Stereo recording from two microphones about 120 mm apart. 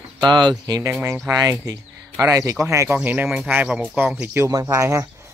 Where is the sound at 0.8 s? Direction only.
20° right (ahead or behind).